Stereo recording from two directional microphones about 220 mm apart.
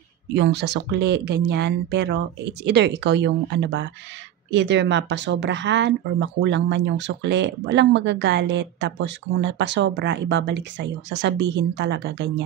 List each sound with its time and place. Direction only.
0.3 s speech: 50° right (ahead or behind)